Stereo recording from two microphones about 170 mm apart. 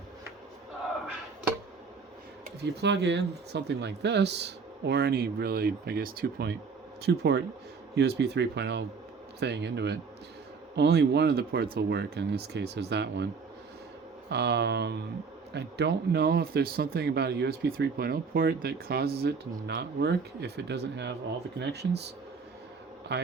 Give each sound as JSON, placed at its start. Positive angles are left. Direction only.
{"t": 2.6, "sound": "speech", "side_deg": -90}
{"t": 14.3, "sound": "speech", "side_deg": -75}
{"t": 15.5, "sound": "speech", "side_deg": -75}
{"t": 23.1, "sound": "speech", "side_deg": -90}